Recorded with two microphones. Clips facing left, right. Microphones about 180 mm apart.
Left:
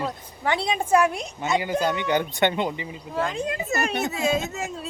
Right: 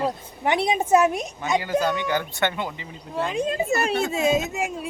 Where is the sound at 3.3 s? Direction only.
20° right (ahead or behind).